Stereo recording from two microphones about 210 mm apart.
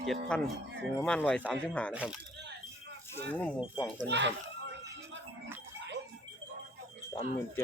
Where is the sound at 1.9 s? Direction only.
5° right (ahead or behind).